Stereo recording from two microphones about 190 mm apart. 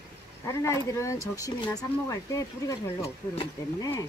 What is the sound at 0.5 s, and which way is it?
Speech, 15° left (ahead or behind).